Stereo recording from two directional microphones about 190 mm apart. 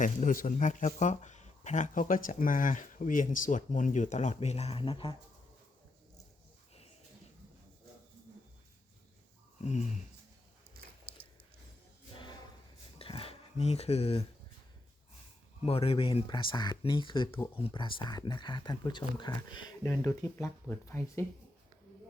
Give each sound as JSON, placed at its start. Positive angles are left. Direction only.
{"t": 0.0, "sound": "speech", "side_deg": 45}
{"t": 9.6, "sound": "speech", "side_deg": 35}
{"t": 10.8, "sound": "biting", "side_deg": -55}
{"t": 12.1, "sound": "a sound", "side_deg": 25}
{"t": 15.6, "sound": "speech", "side_deg": 30}